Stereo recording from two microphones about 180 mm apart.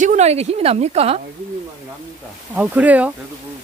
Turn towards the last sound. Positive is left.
turn(degrees=-10)  # may be behind; listen again after turning